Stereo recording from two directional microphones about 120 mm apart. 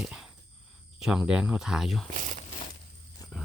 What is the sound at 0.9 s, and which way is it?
Speech, 5° right (ahead or behind).